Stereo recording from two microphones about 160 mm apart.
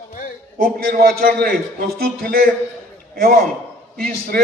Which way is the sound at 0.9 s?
65° right (ahead or behind).